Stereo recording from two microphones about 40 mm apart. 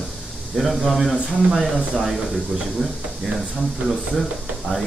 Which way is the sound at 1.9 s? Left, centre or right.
Centre.